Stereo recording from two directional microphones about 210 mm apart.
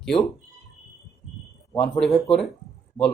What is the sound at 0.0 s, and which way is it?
Speech, centre (ahead or behind).